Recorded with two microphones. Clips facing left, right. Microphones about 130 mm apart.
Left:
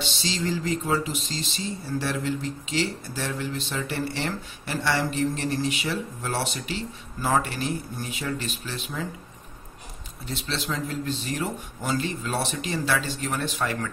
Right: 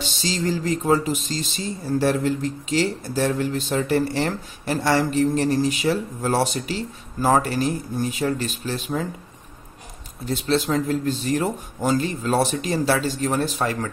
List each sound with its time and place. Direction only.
0.0 s speech: 45° right (ahead or behind)
10.2 s speech: 45° right (ahead or behind)